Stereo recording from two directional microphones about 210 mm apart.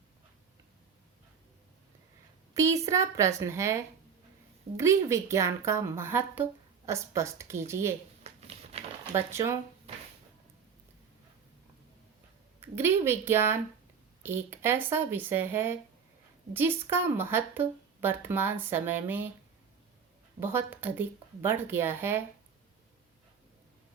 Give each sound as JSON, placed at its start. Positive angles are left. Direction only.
{"t": 2.6, "sound": "a woman's voice", "side_deg": -15}
{"t": 8.2, "sound": "shuffling cards", "side_deg": -30}
{"t": 9.1, "sound": "a woman's voice", "side_deg": -15}
{"t": 12.6, "sound": "a woman's voice", "side_deg": -10}
{"t": 20.4, "sound": "a woman's voice", "side_deg": -10}